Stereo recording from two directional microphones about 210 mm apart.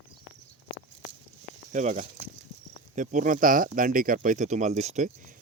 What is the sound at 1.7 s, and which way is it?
Speech, 35° right (ahead or behind).